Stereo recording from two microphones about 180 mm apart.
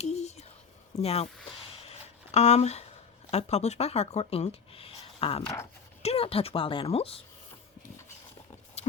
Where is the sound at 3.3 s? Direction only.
35° left (ahead or behind).